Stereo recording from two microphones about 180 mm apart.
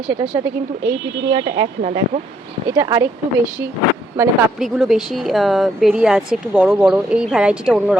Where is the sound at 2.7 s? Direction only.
15° right (ahead or behind).